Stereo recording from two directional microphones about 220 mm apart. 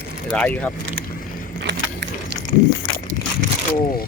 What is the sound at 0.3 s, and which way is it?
Speech, 5° left (ahead or behind).